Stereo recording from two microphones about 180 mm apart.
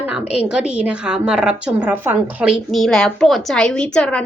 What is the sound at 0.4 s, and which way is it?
A woman's voice, 5° right (ahead or behind).